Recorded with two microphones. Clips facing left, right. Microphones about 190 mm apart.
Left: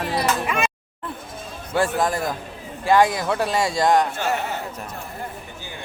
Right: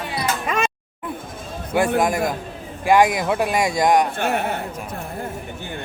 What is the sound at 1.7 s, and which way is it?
Speech, 15° right (ahead or behind).